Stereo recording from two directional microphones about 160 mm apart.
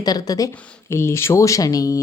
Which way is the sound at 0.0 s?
25° left (ahead or behind).